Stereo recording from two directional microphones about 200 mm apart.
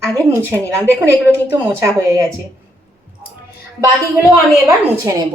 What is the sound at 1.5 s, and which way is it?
Speech, 15° right (ahead or behind).